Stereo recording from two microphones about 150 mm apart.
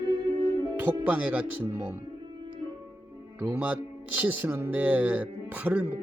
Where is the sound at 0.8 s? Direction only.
10° right (ahead or behind).